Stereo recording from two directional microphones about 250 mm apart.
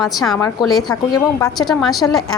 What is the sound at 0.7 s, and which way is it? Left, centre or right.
Speech, centre.